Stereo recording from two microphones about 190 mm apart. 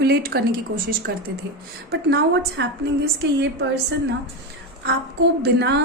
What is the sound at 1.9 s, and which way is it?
A woman's voice, 60° right (ahead or behind).